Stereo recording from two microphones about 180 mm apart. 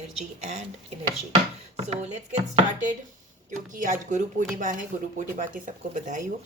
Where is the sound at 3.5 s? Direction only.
45° right (ahead or behind).